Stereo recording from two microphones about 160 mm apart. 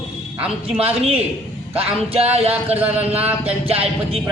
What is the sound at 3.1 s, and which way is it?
Speech, 10° right (ahead or behind).